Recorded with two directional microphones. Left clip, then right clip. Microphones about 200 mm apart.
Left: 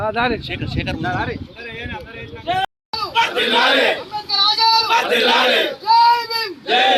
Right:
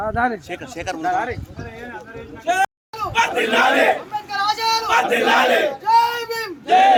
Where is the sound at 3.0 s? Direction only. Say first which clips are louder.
Left 1 dB; 5° right (ahead or behind).